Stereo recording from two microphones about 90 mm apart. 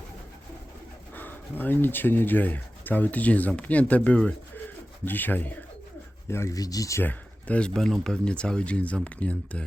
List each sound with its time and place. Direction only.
1.1 s speech: 20° left (ahead or behind)
6.6 s speech: 40° left (ahead or behind)
7.0 s speech: 15° left (ahead or behind)